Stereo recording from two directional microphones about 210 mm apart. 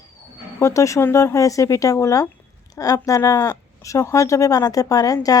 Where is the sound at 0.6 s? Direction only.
15° left (ahead or behind).